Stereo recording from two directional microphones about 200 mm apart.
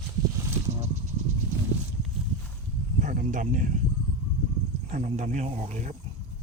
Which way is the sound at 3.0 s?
40° right (ahead or behind).